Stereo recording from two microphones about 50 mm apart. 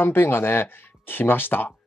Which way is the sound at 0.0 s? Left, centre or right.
Left.